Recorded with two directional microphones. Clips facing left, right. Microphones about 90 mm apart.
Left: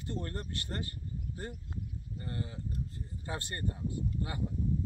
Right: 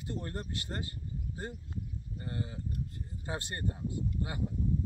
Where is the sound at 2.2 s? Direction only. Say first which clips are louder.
Right 1 dB; 20° right (ahead or behind).